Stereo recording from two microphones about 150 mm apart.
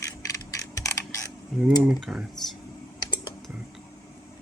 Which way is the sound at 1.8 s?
5° right (ahead or behind).